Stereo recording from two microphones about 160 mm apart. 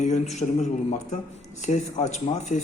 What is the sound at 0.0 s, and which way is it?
Speech, 45° left (ahead or behind).